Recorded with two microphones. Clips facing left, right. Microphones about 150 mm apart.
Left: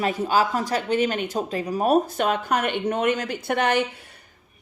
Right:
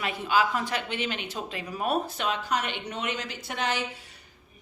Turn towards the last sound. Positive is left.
turn(degrees=55)  # may be behind; listen again after turning